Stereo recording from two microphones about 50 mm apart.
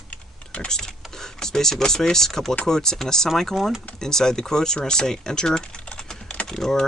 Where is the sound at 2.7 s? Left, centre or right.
Centre.